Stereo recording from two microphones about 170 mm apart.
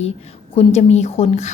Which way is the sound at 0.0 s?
35° left (ahead or behind).